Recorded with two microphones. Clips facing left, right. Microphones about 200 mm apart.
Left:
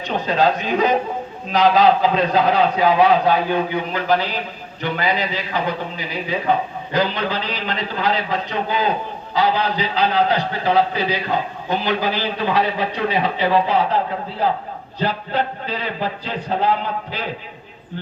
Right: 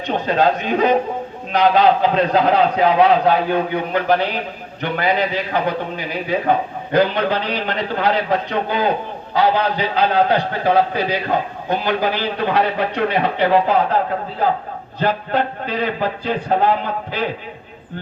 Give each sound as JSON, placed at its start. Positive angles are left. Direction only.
{"t": 0.3, "sound": "a man's voice", "side_deg": -55}
{"t": 14.9, "sound": "a man's voice", "side_deg": -50}